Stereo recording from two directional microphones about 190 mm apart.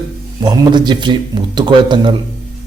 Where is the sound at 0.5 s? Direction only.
25° right (ahead or behind).